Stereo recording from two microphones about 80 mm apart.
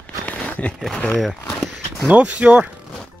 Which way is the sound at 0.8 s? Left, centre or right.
Centre.